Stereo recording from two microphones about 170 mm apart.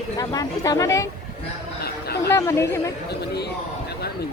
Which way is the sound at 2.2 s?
15° left (ahead or behind).